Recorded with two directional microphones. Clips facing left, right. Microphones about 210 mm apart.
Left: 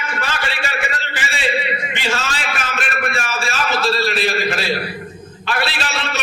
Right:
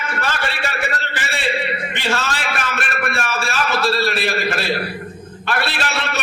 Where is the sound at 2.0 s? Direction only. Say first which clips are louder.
Right 3 dB; 60° right (ahead or behind).